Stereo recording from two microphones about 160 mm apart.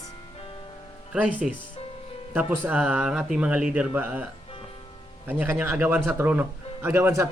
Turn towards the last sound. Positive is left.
turn(degrees=-15)  # may be behind; listen again after turning